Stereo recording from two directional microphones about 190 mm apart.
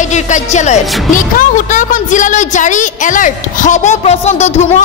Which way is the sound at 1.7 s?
40° left (ahead or behind).